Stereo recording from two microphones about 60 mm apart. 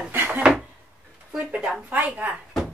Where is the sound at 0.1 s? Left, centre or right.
Right.